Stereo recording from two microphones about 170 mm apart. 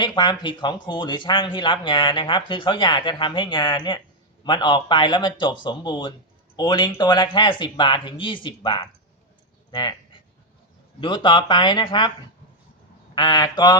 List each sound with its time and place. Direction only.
0.0 s a man's voice: 25° left (ahead or behind)
13.1 s a man's voice: 25° left (ahead or behind)